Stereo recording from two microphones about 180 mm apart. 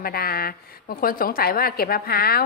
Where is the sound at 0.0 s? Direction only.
55° left (ahead or behind).